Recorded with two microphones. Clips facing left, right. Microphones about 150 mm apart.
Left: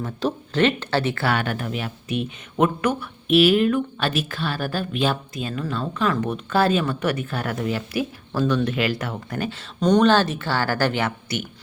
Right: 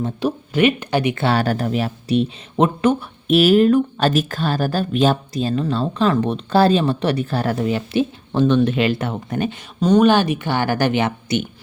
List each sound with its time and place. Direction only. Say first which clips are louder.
0.2 s speech: right 2 dB; 10° right (ahead or behind)
1.4 s speech: right 7 dB; 40° right (ahead or behind)
3.2 s speech: right 4 dB; 40° right (ahead or behind); by 9.6 s 20° right (ahead or behind)
9.8 s speech: right 3 dB; 10° right (ahead or behind)